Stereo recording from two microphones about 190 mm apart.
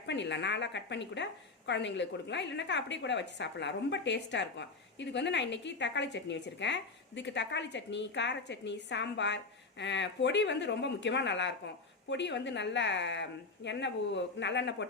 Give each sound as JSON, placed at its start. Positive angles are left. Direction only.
{"t": 0.0, "sound": "a woman's voice", "side_deg": 65}